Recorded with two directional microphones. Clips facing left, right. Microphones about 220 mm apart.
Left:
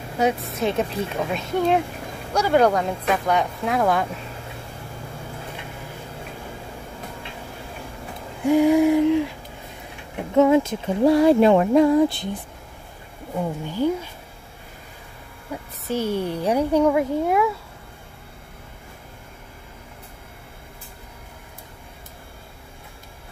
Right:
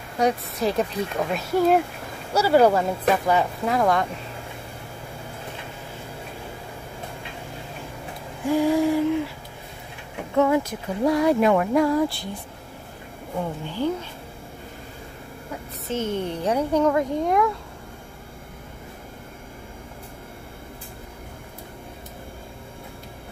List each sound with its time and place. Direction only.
0.2 s speech: centre (ahead or behind)
8.5 s speech: 15° left (ahead or behind)
10.3 s speech: 20° left (ahead or behind)
13.4 s speech: 10° left (ahead or behind)
15.9 s speech: 10° left (ahead or behind)